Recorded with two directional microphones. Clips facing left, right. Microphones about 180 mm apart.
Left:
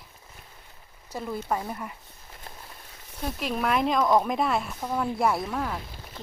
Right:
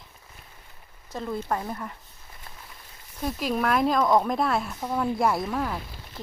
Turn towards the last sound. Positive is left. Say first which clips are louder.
# right 1 dB
turn(degrees=0)  # may be behind; listen again after turning